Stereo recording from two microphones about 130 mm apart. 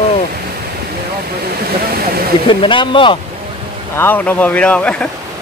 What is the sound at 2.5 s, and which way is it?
Speech, 40° left (ahead or behind).